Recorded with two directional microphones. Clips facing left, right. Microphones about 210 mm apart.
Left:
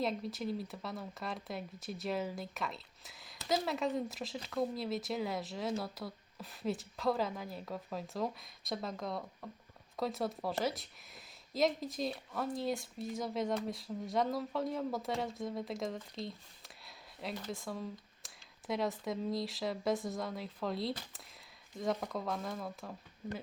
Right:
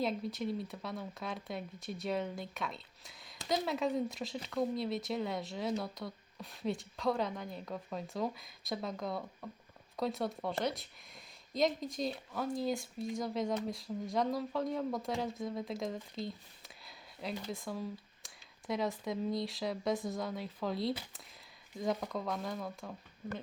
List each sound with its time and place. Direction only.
0.0 s speech: centre (ahead or behind)